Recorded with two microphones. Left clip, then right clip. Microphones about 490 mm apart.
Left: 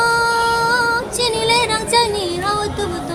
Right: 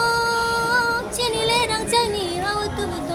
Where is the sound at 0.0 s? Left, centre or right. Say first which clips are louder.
Left 5 dB; right.